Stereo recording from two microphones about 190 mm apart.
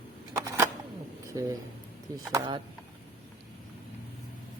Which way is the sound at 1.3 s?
15° right (ahead or behind).